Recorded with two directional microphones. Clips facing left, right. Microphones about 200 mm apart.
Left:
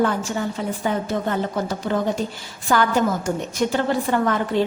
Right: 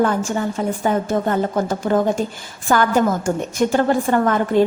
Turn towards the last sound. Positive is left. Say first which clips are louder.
# right 4 dB
turn(degrees=-50)  # may be behind; listen again after turning